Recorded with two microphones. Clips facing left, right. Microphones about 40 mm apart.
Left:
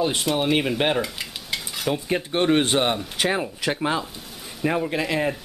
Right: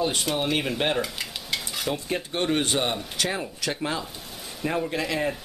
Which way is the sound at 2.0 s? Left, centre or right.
Centre.